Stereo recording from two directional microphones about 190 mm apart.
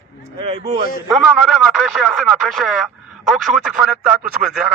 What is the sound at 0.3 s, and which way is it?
Speech, 30° right (ahead or behind).